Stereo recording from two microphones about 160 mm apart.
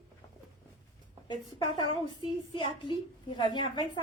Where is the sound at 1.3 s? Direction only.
30° left (ahead or behind).